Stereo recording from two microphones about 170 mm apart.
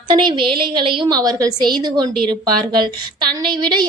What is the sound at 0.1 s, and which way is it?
A woman's voice, 25° right (ahead or behind).